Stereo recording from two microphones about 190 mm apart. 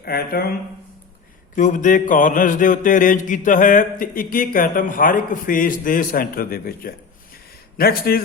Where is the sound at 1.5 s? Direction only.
40° left (ahead or behind).